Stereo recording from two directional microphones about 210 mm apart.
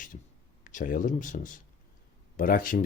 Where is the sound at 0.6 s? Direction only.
40° left (ahead or behind).